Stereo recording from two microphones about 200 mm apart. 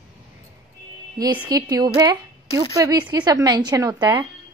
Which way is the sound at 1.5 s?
20° right (ahead or behind).